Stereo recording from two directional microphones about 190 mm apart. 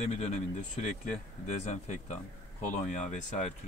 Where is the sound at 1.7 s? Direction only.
40° left (ahead or behind).